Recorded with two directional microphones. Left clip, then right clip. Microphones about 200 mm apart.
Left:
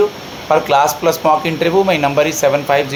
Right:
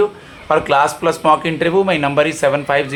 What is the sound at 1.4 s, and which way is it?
Speech, 25° right (ahead or behind).